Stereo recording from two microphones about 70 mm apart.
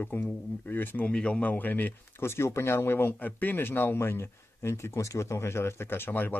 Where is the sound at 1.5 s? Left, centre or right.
Left.